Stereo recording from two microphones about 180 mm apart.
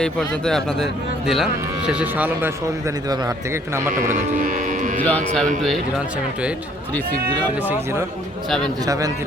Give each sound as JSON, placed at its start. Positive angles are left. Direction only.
{"t": 0.0, "sound": "speech", "side_deg": 5}
{"t": 1.9, "sound": "a man's voice", "side_deg": -5}
{"t": 3.9, "sound": "speech", "side_deg": -50}
{"t": 5.0, "sound": "speech", "side_deg": 5}
{"t": 8.4, "sound": "speech", "side_deg": 5}
{"t": 8.9, "sound": "a man's voice", "side_deg": -20}